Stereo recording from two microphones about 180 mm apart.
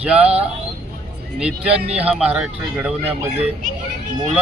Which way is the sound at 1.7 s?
35° right (ahead or behind).